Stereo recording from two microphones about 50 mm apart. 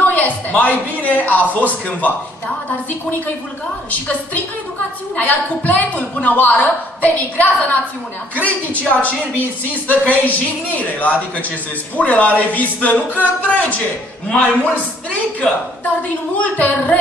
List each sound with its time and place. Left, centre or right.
0.0 s a man's voice: left
3.9 s a woman's voice: left
16.3 s a woman's voice: left